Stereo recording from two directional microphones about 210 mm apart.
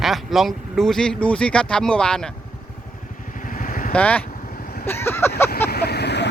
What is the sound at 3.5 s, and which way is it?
Vehicle, 40° left (ahead or behind).